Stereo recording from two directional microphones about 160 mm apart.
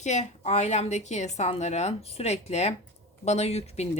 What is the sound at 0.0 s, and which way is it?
A woman's voice, 45° left (ahead or behind).